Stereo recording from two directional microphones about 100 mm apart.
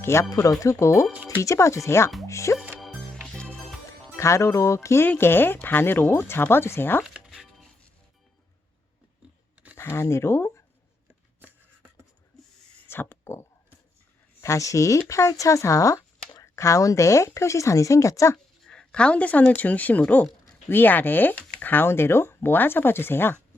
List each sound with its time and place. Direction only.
0.0 s speech: 30° left (ahead or behind)
2.7 s music: centre (ahead or behind)
4.2 s speech: 30° left (ahead or behind)
7.0 s music: 5° right (ahead or behind)
9.7 s speech: 25° left (ahead or behind)
12.9 s a sound: 25° left (ahead or behind)
14.4 s speech: 30° left (ahead or behind)
18.6 s speech: 5° left (ahead or behind)